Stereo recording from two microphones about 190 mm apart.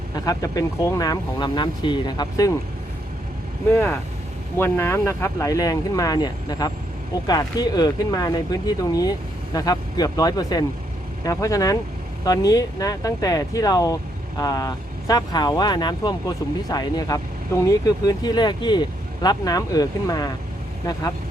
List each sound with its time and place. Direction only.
0.3 s speech: 20° left (ahead or behind)
4.5 s speech: 15° left (ahead or behind)